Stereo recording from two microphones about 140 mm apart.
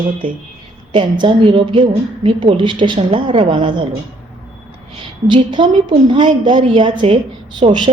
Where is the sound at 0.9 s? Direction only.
35° right (ahead or behind).